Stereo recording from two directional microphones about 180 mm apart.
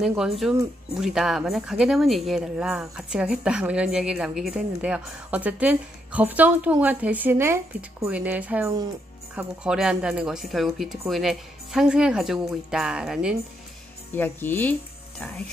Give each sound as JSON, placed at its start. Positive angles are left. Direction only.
{"t": 0.0, "sound": "speech", "side_deg": -5}
{"t": 14.1, "sound": "speech", "side_deg": 10}